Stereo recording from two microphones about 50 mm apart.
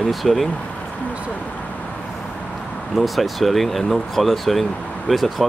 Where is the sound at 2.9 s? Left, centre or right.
Centre.